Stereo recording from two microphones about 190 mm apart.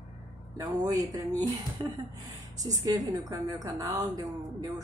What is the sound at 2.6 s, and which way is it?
A woman's voice, 20° right (ahead or behind).